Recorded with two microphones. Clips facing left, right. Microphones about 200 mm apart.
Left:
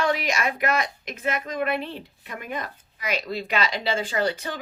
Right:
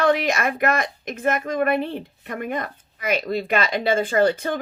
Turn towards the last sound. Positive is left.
turn(degrees=-50)  # may be behind; listen again after turning